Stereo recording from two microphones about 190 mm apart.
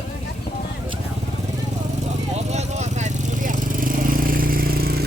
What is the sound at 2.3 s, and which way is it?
Vehicle, 35° right (ahead or behind).